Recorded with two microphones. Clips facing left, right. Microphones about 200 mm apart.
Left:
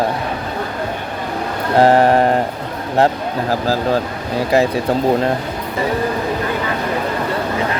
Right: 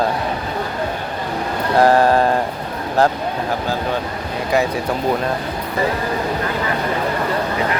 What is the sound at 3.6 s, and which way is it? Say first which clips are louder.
Speech: left 4 dB; 35° left (ahead or behind).